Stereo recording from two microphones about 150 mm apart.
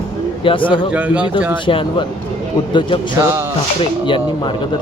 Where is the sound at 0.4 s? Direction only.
35° left (ahead or behind).